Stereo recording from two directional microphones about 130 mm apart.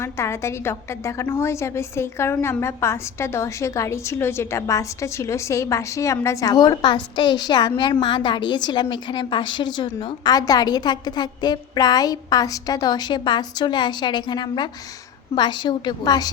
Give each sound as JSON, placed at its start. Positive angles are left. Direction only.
{"t": 0.0, "sound": "a woman's voice", "side_deg": 20}